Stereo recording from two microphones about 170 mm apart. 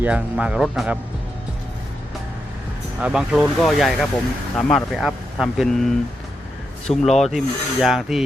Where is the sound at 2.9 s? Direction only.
5° right (ahead or behind).